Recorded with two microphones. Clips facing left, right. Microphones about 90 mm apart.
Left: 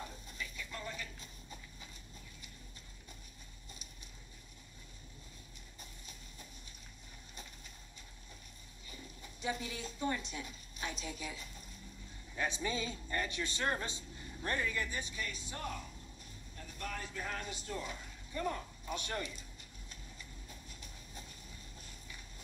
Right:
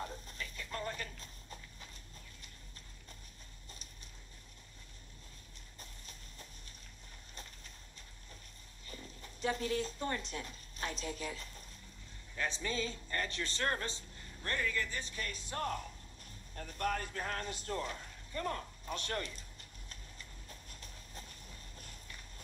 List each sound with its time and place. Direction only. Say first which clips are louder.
0.4 s a sound: right 2 dB; 50° right (ahead or behind)
1.2 s clip-clop: even; 10° left (ahead or behind)
5.8 s clip-clop: right 1 dB; 10° left (ahead or behind)
9.2 s a woman's voice: right 3 dB; 10° left (ahead or behind)
15.5 s speech: right 9 dB; 50° right (ahead or behind)
18.3 s speech: even; 10° left (ahead or behind)
20.4 s clip-clop: even; 10° left (ahead or behind)